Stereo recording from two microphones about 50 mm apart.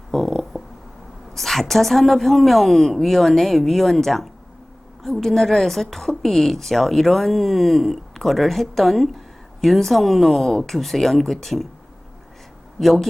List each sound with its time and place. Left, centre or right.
0.1 s a sound: centre
1.4 s a woman's voice: centre
12.8 s a woman's voice: centre